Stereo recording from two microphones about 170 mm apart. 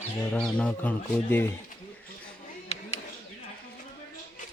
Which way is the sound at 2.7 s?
40° left (ahead or behind).